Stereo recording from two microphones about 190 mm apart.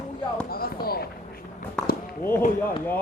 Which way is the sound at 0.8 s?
55° left (ahead or behind).